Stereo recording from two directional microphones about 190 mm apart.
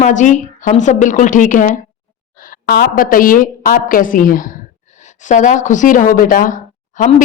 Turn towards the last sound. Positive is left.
turn(degrees=45)  # may be behind; listen again after turning